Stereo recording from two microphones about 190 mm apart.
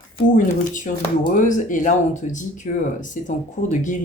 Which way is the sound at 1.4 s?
45° left (ahead or behind).